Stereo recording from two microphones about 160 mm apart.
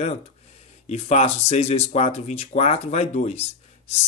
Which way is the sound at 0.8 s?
45° left (ahead or behind).